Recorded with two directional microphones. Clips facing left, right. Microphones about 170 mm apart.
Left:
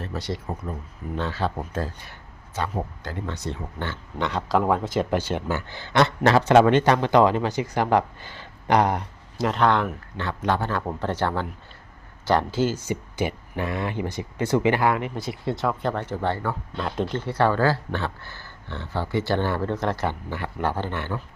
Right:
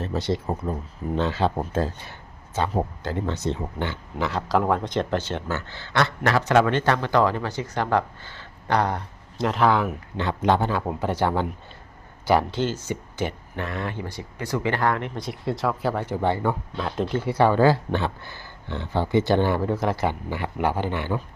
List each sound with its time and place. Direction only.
0.0 s speech: 25° right (ahead or behind)
4.2 s speech: centre (ahead or behind); by 9.0 s 15° left (ahead or behind)
9.4 s speech: centre (ahead or behind)
10.2 s speech: 20° right (ahead or behind)
10.7 s speech: 10° right (ahead or behind)
12.5 s speech: 5° left (ahead or behind); by 14.7 s 25° left (ahead or behind)
14.7 s speech: 10° left (ahead or behind); by 16.6 s 15° right (ahead or behind)
16.7 s speech: centre (ahead or behind)